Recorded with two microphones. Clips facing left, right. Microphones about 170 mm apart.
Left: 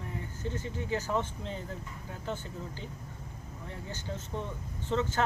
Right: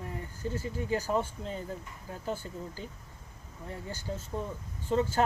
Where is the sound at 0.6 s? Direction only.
40° right (ahead or behind).